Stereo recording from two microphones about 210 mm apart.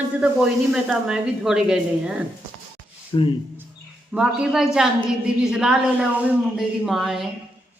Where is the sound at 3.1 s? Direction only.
20° left (ahead or behind).